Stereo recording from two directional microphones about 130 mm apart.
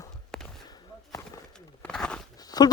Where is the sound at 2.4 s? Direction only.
30° left (ahead or behind).